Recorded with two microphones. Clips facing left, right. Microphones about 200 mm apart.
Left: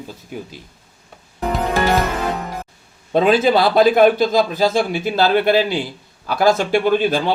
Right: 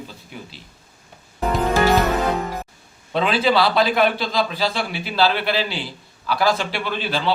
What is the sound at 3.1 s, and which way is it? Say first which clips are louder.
A man's voice: left 5 dB; 45° left (ahead or behind).